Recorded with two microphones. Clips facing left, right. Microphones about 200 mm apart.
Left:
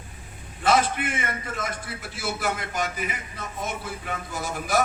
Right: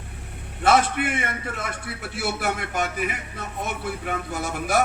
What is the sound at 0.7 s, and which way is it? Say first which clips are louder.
A man's voice: right 2 dB; 65° right (ahead or behind).